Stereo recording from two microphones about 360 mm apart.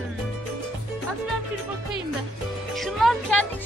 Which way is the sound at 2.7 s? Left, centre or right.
Centre.